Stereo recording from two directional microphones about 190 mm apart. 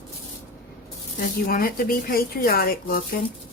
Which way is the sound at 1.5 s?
50° left (ahead or behind).